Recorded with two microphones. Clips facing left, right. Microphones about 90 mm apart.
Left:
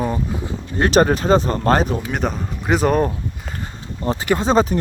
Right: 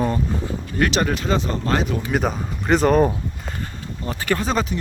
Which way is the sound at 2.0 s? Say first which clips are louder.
Right 1 dB; centre (ahead or behind).